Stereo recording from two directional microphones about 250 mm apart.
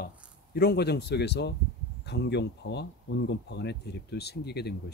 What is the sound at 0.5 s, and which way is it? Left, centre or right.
Speech, left.